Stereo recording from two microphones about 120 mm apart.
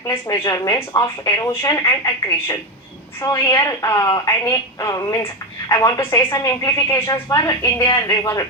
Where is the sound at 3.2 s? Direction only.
35° left (ahead or behind).